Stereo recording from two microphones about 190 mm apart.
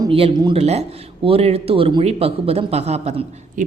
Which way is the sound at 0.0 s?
30° right (ahead or behind).